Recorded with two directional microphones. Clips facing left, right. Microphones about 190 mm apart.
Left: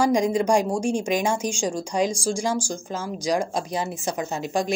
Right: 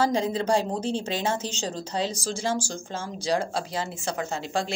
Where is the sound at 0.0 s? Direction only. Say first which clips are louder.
Left 4 dB; 15° left (ahead or behind).